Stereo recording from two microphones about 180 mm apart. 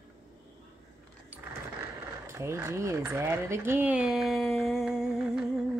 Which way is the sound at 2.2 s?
15° right (ahead or behind).